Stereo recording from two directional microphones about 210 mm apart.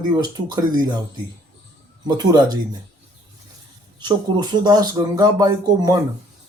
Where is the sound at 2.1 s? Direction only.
20° right (ahead or behind).